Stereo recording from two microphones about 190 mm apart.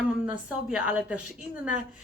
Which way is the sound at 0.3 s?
5° right (ahead or behind).